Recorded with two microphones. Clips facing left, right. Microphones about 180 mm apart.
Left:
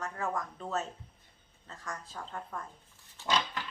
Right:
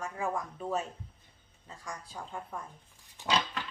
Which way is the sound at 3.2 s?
15° right (ahead or behind).